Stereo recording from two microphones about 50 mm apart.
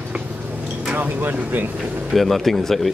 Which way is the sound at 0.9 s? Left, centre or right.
Right.